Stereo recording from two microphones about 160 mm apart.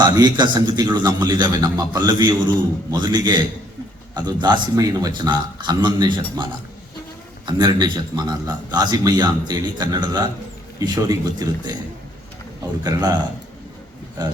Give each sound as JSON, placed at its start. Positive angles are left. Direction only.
{"t": 0.0, "sound": "a man's voice", "side_deg": -25}
{"t": 12.8, "sound": "a man's voice", "side_deg": -25}